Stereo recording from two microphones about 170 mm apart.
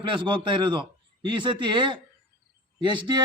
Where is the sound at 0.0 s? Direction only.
30° right (ahead or behind).